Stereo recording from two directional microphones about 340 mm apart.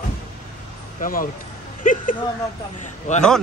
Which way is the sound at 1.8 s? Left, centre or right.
Left.